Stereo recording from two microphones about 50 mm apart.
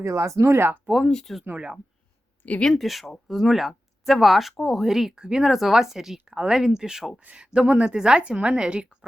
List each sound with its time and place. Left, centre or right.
0.0 s speech: right
0.4 s speech: right
1.0 s speech: centre
1.5 s a woman's voice: right
2.7 s a woman's voice: centre